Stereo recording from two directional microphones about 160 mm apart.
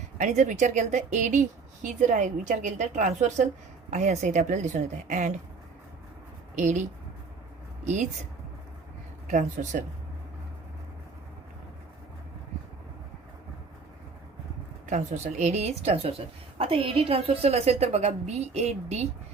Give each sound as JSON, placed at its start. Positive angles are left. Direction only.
{"t": 0.2, "sound": "a woman's voice", "side_deg": -50}
{"t": 6.6, "sound": "a woman's voice", "side_deg": -50}
{"t": 9.2, "sound": "a woman's voice", "side_deg": -50}
{"t": 14.8, "sound": "a woman's voice", "side_deg": -50}